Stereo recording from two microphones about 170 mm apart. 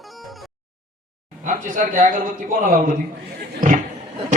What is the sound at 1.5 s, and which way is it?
A man's voice, 50° right (ahead or behind).